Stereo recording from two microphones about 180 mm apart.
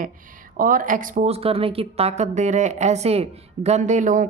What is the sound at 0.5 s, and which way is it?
Speech, 50° right (ahead or behind).